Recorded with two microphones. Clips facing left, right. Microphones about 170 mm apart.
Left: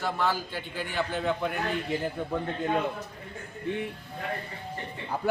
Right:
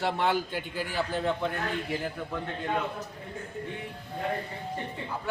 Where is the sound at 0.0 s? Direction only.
25° right (ahead or behind).